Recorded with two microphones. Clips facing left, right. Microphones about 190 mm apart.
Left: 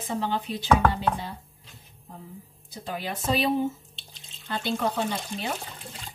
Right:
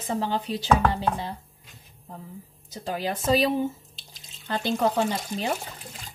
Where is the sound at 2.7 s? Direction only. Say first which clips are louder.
Right 4 dB; 45° right (ahead or behind).